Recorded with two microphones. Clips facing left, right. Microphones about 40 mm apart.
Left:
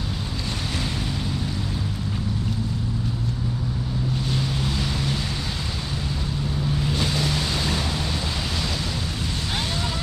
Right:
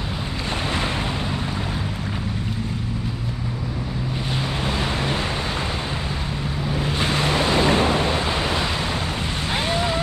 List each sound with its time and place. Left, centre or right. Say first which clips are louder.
4.4 s vehicle: right 2 dB; right
6.7 s waves: right 4 dB; right
9.7 s a sound: right 6 dB; right